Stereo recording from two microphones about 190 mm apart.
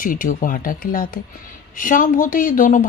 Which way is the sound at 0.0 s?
45° left (ahead or behind).